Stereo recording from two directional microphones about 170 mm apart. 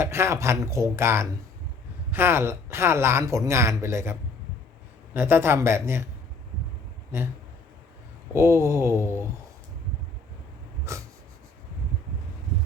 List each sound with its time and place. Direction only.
0.0 s speech: 15° right (ahead or behind)
8.3 s speech: 15° right (ahead or behind)
10.9 s dog: 15° right (ahead or behind)